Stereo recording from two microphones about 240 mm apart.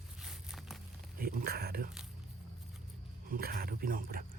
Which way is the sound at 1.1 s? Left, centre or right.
Right.